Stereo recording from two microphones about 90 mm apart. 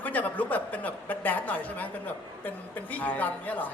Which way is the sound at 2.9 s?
20° left (ahead or behind).